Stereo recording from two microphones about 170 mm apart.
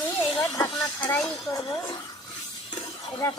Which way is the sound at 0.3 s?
25° left (ahead or behind).